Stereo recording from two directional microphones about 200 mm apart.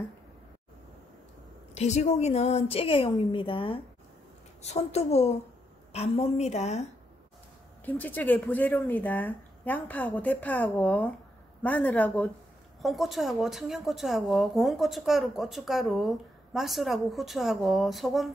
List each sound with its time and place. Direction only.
1.8 s a woman's voice: 35° left (ahead or behind)
7.8 s a woman's voice: 10° left (ahead or behind)